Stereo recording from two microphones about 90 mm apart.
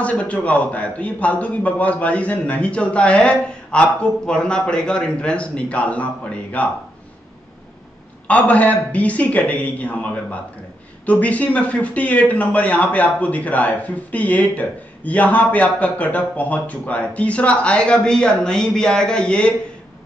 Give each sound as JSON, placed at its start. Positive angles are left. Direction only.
{"t": 0.0, "sound": "speech", "side_deg": 15}
{"t": 8.3, "sound": "speech", "side_deg": 15}